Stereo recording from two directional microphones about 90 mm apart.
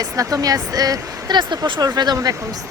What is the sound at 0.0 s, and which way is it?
Speech, 40° right (ahead or behind).